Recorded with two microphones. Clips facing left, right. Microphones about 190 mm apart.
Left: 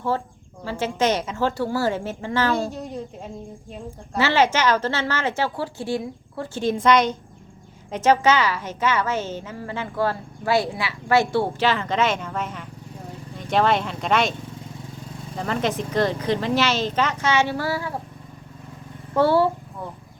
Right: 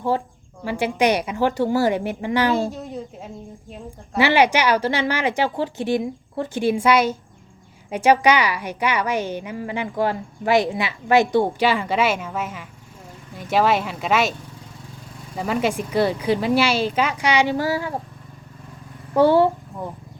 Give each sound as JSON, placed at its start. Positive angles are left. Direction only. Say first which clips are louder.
{"t": 0.6, "sound": "a woman's voice", "louder": "right 3 dB", "side_deg": -15}
{"t": 2.6, "sound": "a woman's voice", "louder": "right 2 dB", "side_deg": 0}
{"t": 4.2, "sound": "a woman's voice", "louder": "right 2 dB", "side_deg": -15}
{"t": 15.4, "sound": "a woman's voice", "louder": "right 2 dB", "side_deg": -10}
{"t": 19.1, "sound": "speech", "louder": "right 3 dB", "side_deg": -15}